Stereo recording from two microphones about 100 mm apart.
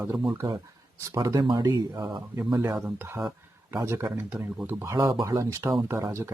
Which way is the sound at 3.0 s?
25° right (ahead or behind).